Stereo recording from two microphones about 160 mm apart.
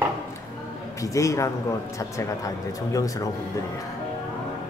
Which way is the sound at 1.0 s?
20° left (ahead or behind).